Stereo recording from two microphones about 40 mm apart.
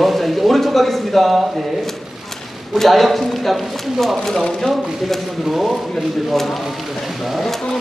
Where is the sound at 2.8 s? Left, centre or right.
Centre.